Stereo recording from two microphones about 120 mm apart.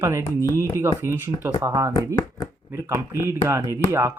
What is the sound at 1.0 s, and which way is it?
Speech, 20° right (ahead or behind).